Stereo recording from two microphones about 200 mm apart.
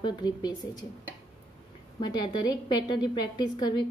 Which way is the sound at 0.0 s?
20° left (ahead or behind).